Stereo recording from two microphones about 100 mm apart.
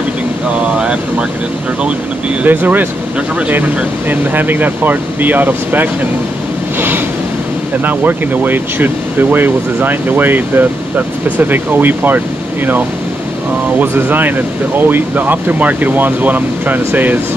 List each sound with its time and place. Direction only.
2.4 s speech: 20° right (ahead or behind)
7.8 s speech: 20° right (ahead or behind)
13.7 s speech: 20° right (ahead or behind)